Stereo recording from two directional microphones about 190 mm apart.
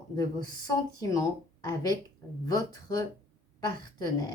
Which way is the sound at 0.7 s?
20° left (ahead or behind).